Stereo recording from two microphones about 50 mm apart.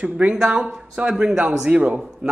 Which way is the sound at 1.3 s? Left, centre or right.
Centre.